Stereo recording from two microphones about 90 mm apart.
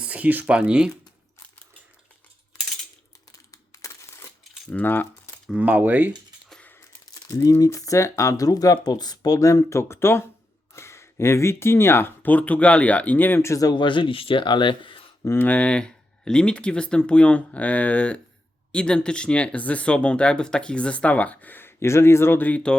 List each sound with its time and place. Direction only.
0.0 s speech: 15° right (ahead or behind)
3.5 s crushing: 40° left (ahead or behind)
4.7 s speech: 20° left (ahead or behind)
5.5 s speech: 15° right (ahead or behind)
7.1 s speech: 40° left (ahead or behind); by 13.5 s 20° left (ahead or behind)
13.5 s speech: 40° left (ahead or behind)
13.7 s speech: 65° left (ahead or behind)
15.2 s speech: 30° left (ahead or behind)
15.4 s speech: 15° left (ahead or behind)